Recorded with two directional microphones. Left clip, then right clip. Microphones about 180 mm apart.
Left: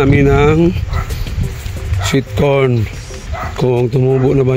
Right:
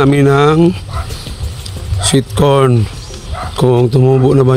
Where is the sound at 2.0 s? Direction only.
15° right (ahead or behind).